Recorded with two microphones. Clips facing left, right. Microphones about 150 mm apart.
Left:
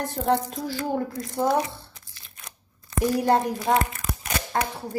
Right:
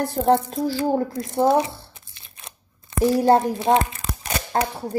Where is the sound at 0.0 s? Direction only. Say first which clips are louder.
Right 5 dB; 30° right (ahead or behind).